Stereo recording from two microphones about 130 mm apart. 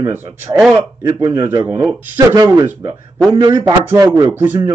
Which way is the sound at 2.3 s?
30° right (ahead or behind).